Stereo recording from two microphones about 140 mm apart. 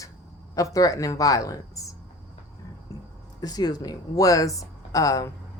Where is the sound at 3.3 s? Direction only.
30° left (ahead or behind).